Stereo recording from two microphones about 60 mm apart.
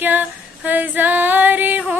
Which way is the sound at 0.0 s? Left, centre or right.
Right.